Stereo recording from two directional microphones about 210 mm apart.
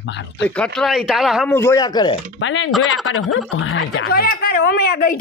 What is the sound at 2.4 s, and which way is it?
Speech, 65° left (ahead or behind).